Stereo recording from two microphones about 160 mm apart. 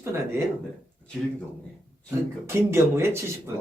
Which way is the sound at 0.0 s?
15° right (ahead or behind).